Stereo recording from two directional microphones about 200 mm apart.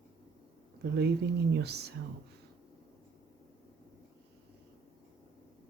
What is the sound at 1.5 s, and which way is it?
Speech, 55° right (ahead or behind).